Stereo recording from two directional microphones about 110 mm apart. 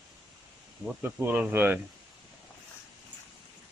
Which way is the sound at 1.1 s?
15° right (ahead or behind).